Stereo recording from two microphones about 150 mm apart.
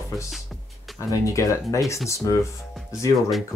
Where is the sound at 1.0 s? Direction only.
20° left (ahead or behind).